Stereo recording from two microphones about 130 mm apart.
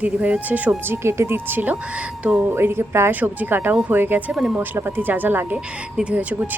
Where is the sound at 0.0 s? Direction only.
10° right (ahead or behind).